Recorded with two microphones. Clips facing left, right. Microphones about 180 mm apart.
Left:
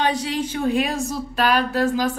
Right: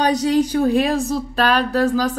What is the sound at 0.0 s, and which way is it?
A woman's voice, 40° right (ahead or behind).